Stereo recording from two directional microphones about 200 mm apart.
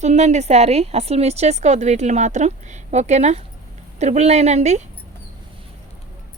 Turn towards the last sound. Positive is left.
turn(degrees=-35)  # may be behind; listen again after turning